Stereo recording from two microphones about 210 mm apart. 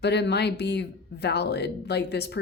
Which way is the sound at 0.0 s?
55° left (ahead or behind).